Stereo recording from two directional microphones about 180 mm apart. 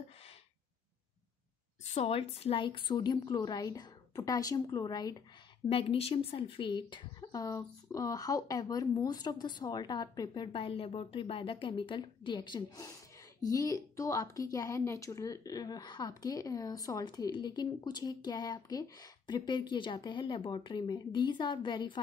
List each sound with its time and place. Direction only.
2.0 s a woman's voice: 35° left (ahead or behind)
5.7 s a woman's voice: 30° left (ahead or behind)